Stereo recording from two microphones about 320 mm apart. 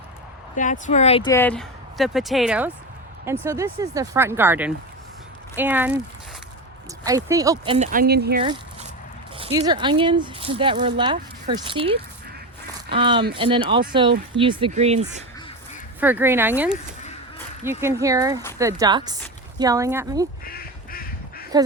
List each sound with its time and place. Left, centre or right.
0.5 s speech: left; by 6.0 s centre
7.3 s speech: centre; by 8.4 s right
8.4 s a sound: centre
9.4 s speech: centre
16.0 s speech: centre
20.4 s duck: left